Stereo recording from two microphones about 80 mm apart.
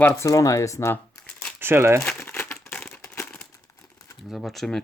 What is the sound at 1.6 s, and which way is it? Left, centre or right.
Speech, right.